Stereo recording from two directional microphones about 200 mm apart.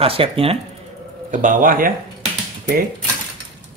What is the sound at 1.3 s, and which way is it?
Speech, 40° right (ahead or behind).